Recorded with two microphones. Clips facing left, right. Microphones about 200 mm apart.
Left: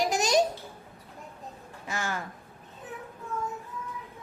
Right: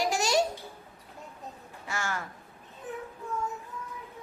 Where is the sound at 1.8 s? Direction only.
20° left (ahead or behind).